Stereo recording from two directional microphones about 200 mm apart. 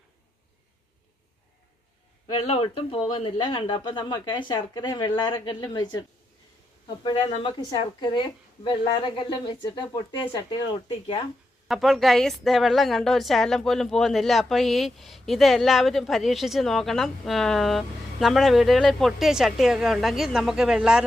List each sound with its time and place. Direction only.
2.3 s speech: 30° left (ahead or behind)
11.7 s a woman's voice: centre (ahead or behind)